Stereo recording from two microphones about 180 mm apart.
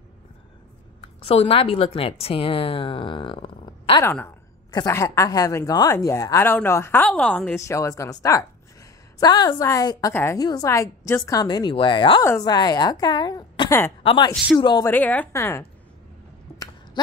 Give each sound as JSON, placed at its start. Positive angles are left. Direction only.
{"t": 1.0, "sound": "a woman's voice", "side_deg": 35}
{"t": 4.0, "sound": "a woman's voice", "side_deg": 10}
{"t": 14.3, "sound": "speech", "side_deg": 0}
{"t": 14.6, "sound": "a woman's voice", "side_deg": 25}
{"t": 14.9, "sound": "a woman's voice", "side_deg": 10}